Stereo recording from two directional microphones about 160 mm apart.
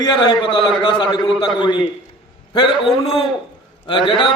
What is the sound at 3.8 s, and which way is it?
Speech, 30° left (ahead or behind).